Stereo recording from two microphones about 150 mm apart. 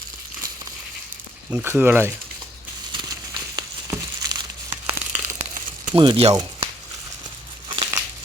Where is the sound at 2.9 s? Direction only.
25° right (ahead or behind).